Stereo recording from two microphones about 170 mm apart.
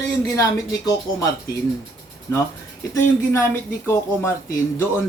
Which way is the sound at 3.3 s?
15° left (ahead or behind).